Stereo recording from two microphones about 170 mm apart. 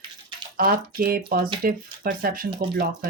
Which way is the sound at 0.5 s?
55° right (ahead or behind).